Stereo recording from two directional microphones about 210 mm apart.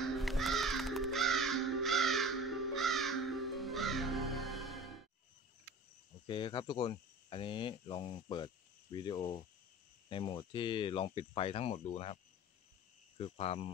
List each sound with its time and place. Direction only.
0.2 s crow: centre (ahead or behind)
6.2 s speech: 25° left (ahead or behind)
13.2 s speech: 30° left (ahead or behind)